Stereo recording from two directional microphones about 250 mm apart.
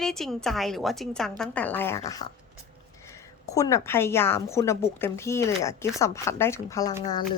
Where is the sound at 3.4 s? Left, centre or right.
Centre.